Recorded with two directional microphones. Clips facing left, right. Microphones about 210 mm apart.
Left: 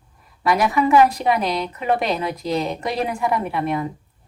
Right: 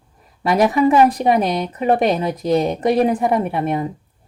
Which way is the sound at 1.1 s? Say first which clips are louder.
Right 4 dB; 55° right (ahead or behind).